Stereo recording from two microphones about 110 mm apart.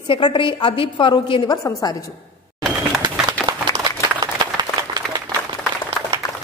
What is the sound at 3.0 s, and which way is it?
Applause, 40° right (ahead or behind).